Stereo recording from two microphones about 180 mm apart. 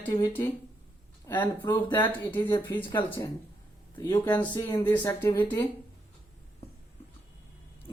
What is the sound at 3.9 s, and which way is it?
Speech, 20° left (ahead or behind).